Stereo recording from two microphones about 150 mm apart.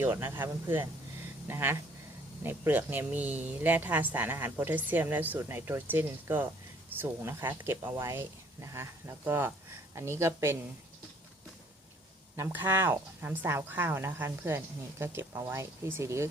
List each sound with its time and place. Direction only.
0.0 s speech: 15° right (ahead or behind)
12.4 s speech: 15° right (ahead or behind)